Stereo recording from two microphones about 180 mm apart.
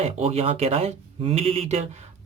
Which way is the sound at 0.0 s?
35° right (ahead or behind).